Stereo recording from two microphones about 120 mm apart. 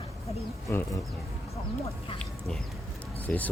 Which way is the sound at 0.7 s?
25° left (ahead or behind).